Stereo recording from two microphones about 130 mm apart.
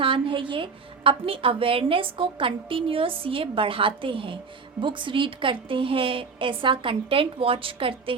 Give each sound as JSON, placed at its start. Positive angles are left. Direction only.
{"t": 0.0, "sound": "a woman's voice", "side_deg": -40}